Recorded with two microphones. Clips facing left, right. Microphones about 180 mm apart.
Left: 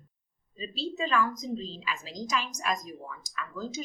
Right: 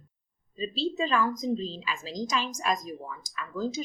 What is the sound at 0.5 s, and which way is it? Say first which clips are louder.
A woman's voice: right 5 dB; 30° right (ahead or behind).